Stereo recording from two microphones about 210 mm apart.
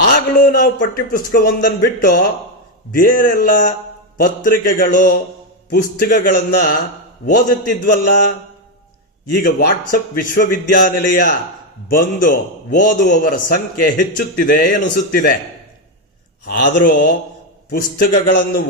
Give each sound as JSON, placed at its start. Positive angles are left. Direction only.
{"t": 0.1, "sound": "a man's voice", "side_deg": 40}
{"t": 16.5, "sound": "speech", "side_deg": 40}